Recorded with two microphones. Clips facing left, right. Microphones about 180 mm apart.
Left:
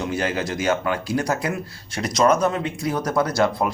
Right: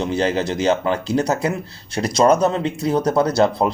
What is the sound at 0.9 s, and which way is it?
Speech, 25° right (ahead or behind).